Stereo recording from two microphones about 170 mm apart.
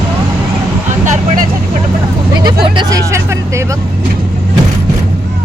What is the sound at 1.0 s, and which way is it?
Vehicle, 45° right (ahead or behind).